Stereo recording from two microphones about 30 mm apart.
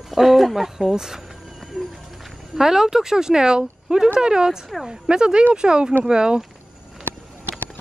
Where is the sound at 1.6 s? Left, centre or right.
Centre.